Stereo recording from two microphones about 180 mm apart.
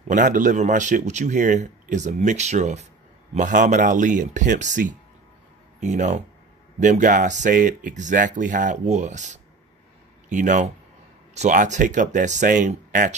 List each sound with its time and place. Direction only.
0.1 s a man's voice: 45° right (ahead or behind)